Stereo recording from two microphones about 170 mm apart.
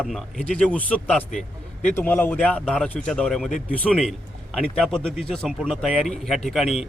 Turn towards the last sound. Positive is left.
turn(degrees=0)  # may be behind; listen again after turning